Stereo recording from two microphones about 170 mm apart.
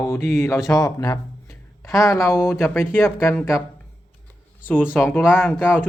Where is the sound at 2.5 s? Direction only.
15° left (ahead or behind).